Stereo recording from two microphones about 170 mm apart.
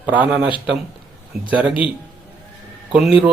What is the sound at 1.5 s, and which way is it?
Speech, 5° right (ahead or behind).